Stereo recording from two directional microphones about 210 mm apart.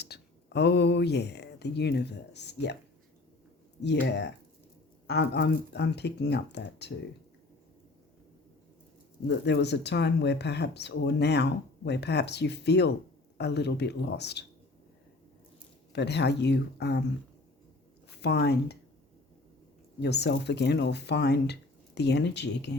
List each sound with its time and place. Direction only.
0.0 s speech: 50° left (ahead or behind)
3.8 s speech: 55° left (ahead or behind)
9.2 s speech: 55° left (ahead or behind)
15.9 s speech: 55° left (ahead or behind)
18.2 s speech: 50° left (ahead or behind)
20.0 s speech: 50° left (ahead or behind)